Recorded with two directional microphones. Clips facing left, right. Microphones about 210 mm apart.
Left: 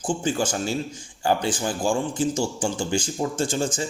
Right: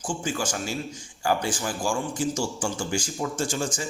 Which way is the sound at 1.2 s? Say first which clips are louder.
Left 3 dB; 25° left (ahead or behind).